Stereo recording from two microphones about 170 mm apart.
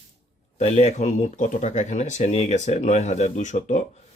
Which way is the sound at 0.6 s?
40° left (ahead or behind).